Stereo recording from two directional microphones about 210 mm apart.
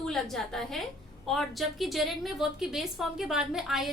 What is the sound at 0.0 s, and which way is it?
A woman's voice, centre (ahead or behind).